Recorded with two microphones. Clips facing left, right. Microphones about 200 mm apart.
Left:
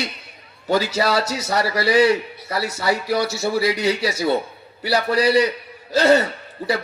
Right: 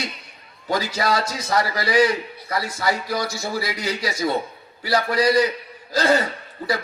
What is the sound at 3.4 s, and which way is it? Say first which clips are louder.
Speech: left 7 dB; 65° left (ahead or behind).